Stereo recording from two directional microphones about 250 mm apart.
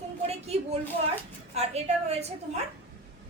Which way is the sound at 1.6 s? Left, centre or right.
Right.